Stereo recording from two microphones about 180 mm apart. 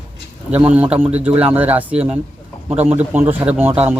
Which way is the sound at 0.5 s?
10° right (ahead or behind).